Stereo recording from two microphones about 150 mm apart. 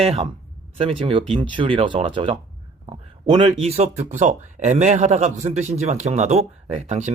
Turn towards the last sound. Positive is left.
turn(degrees=-50)  # may be behind; listen again after turning